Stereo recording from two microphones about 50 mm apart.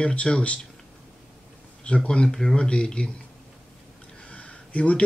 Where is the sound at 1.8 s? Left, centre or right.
Left.